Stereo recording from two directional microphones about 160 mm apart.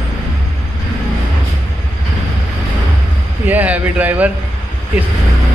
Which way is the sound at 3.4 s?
10° right (ahead or behind).